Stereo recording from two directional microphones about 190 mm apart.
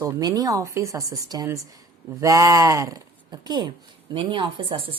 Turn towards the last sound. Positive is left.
turn(degrees=-30)  # may be behind; listen again after turning